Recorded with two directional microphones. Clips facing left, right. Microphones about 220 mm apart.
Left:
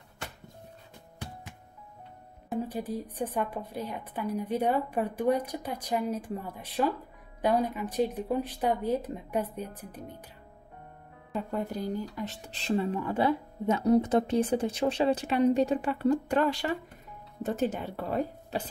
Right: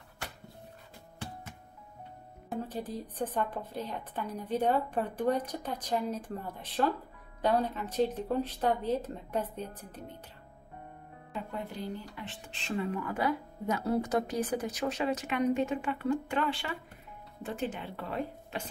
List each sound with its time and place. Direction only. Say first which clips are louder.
2.7 s a woman's voice: left 3 dB; 15° left (ahead or behind)
11.3 s speech: left 6 dB; 45° left (ahead or behind)